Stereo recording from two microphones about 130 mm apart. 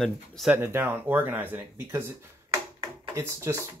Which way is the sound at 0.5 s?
15° right (ahead or behind).